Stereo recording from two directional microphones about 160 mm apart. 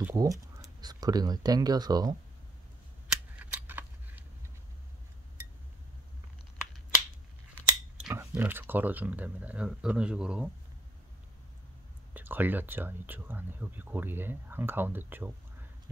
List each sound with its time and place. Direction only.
0.0 s speech: 20° right (ahead or behind)
3.1 s scissors: 10° right (ahead or behind)
8.1 s speech: 15° right (ahead or behind)
12.1 s speech: 10° right (ahead or behind)